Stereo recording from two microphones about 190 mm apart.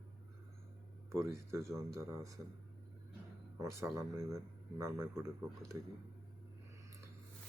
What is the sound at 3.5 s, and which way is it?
A man's voice, 15° right (ahead or behind).